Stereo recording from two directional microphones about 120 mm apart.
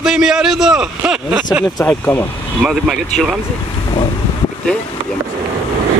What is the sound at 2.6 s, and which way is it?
Speech, 5° right (ahead or behind).